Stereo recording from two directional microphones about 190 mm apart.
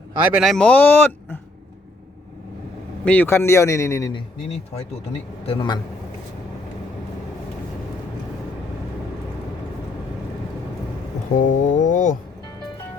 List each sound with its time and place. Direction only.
0.3 s speech: centre (ahead or behind)
3.0 s speech: 10° left (ahead or behind)
5.5 s a man's voice: 25° left (ahead or behind)
11.3 s a sound: 45° left (ahead or behind)